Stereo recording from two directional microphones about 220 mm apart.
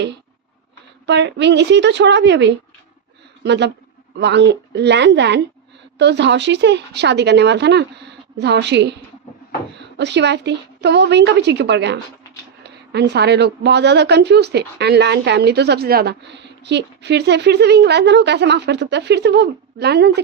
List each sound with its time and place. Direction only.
1.0 s a woman's voice: 50° right (ahead or behind)
10.0 s a woman's voice: 50° right (ahead or behind)